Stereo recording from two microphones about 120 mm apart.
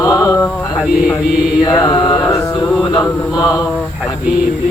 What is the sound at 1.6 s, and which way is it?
Mantra, 30° left (ahead or behind).